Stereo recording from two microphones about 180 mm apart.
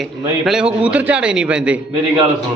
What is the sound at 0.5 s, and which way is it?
A man's voice, 5° right (ahead or behind).